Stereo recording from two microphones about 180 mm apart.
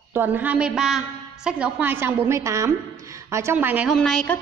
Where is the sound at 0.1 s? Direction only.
10° right (ahead or behind).